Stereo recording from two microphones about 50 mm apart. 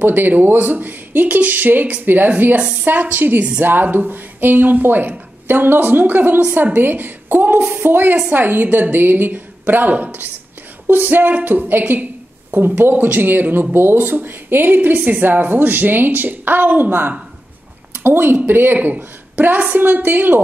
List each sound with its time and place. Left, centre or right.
0.0 s a woman's voice: right